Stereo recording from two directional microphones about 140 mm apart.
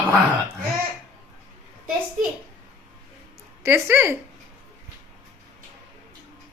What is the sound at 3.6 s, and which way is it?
Speech, 20° right (ahead or behind).